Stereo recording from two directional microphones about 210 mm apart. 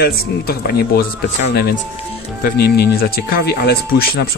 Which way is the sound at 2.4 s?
45° left (ahead or behind).